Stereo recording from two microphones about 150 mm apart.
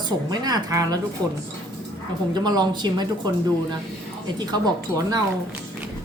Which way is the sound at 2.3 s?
30° right (ahead or behind).